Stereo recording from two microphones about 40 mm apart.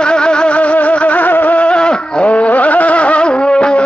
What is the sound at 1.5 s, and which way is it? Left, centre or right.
Music, left.